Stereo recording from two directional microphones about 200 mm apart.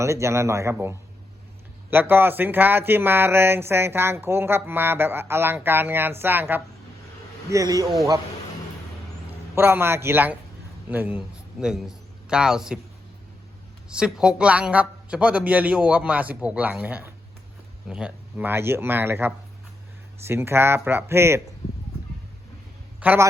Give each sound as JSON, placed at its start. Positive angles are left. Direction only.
{"t": 0.0, "sound": "speech", "side_deg": -15}
{"t": 9.6, "sound": "a man's voice", "side_deg": -10}
{"t": 13.9, "sound": "speech", "side_deg": -5}
{"t": 23.0, "sound": "a man's voice", "side_deg": -10}